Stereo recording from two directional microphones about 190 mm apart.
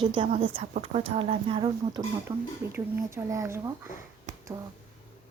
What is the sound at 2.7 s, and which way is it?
Speech, 15° right (ahead or behind).